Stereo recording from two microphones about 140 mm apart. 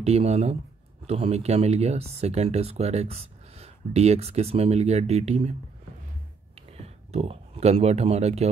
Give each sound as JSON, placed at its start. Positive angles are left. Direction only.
{"t": 0.0, "sound": "speech", "side_deg": -50}
{"t": 6.8, "sound": "speech", "side_deg": -50}